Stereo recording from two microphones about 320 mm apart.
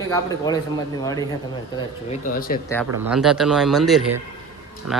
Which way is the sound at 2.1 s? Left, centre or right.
Left.